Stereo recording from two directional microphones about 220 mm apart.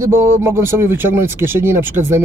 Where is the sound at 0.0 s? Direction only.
10° right (ahead or behind).